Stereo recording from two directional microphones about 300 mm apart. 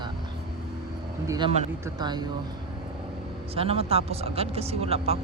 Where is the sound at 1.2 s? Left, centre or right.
Centre.